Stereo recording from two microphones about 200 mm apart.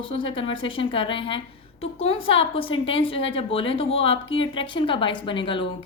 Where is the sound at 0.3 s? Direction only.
25° left (ahead or behind).